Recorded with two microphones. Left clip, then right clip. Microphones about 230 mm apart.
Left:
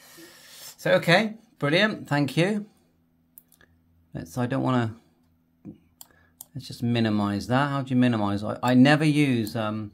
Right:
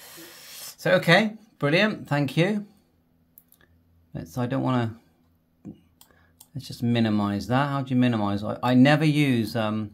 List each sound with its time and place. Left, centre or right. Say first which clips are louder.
0.0 s speech: right 3 dB; centre
3.5 s a sound: left 2 dB; centre
6.1 s speech: right 1 dB; centre